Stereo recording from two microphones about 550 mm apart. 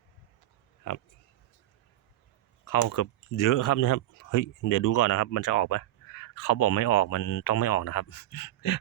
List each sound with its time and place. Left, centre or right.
2.6 s speech: left